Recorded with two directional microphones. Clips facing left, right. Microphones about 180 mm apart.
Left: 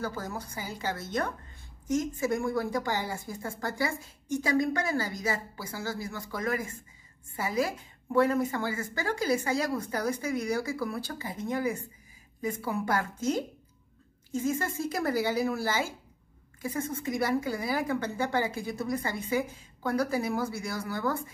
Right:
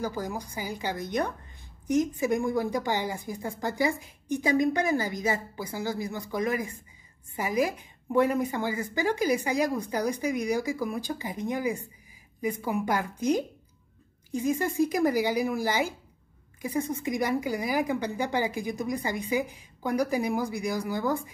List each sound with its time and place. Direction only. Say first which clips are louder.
0.0 s a woman's voice: right 3 dB; 15° right (ahead or behind)